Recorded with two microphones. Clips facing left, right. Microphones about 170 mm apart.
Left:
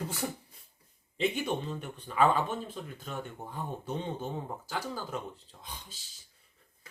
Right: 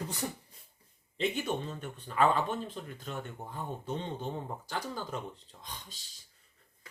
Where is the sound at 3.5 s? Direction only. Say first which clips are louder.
Left 1 dB; 5° left (ahead or behind).